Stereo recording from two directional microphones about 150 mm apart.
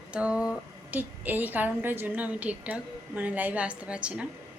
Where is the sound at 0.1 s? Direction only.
10° right (ahead or behind).